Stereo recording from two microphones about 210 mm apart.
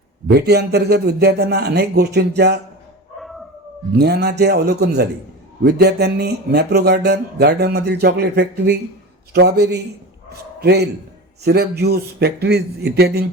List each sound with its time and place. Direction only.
0.3 s speech: 50° right (ahead or behind)
3.2 s dog: centre (ahead or behind)
3.9 s a man's voice: 50° right (ahead or behind)